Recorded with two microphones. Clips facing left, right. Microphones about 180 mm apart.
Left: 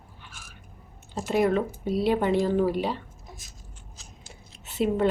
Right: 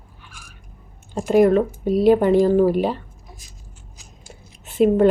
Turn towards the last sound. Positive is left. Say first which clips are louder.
# right 9 dB
turn(degrees=-50)  # may be behind; listen again after turning